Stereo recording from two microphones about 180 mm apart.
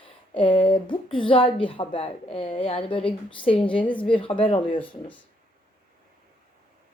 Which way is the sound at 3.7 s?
10° left (ahead or behind).